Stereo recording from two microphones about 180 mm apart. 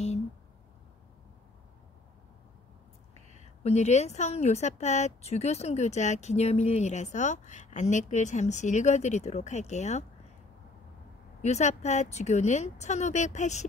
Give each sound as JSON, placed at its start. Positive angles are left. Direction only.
{"t": 3.2, "sound": "a sound", "side_deg": -40}
{"t": 3.6, "sound": "speech", "side_deg": 40}
{"t": 11.4, "sound": "speech", "side_deg": 40}